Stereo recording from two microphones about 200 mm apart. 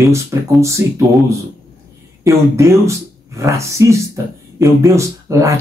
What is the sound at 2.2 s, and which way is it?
Speech, 15° right (ahead or behind).